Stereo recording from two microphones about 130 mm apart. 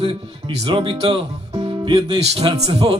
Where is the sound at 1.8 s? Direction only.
40° right (ahead or behind).